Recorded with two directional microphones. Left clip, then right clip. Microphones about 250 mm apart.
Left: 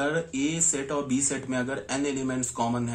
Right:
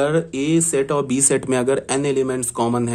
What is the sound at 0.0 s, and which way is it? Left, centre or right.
Speech, right.